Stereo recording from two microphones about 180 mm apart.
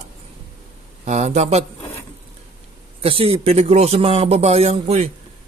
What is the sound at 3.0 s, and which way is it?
A man's voice, 30° right (ahead or behind).